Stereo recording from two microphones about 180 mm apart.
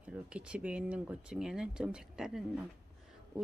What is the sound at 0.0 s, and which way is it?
Speech, 5° right (ahead or behind).